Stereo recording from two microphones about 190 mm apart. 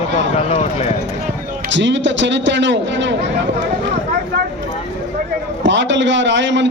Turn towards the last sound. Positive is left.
turn(degrees=-70)  # may be behind; listen again after turning